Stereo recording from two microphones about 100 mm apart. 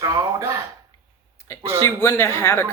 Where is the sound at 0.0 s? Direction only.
35° right (ahead or behind).